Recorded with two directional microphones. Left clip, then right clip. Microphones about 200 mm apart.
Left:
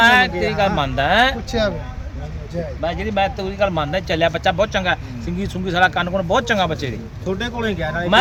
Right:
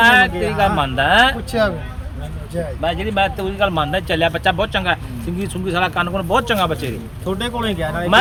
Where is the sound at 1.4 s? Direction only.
15° left (ahead or behind); by 6.9 s 30° left (ahead or behind).